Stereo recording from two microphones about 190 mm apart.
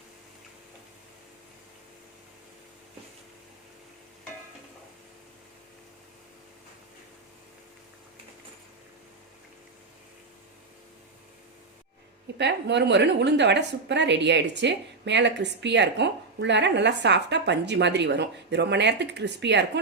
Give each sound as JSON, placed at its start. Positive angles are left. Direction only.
{"t": 12.4, "sound": "a woman's voice", "side_deg": -65}